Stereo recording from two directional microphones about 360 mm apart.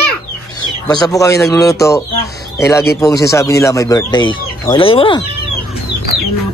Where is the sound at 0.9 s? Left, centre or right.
Centre.